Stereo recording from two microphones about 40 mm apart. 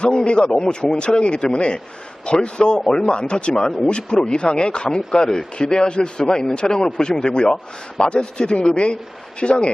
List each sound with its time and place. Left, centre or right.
0.0 s a man's voice: left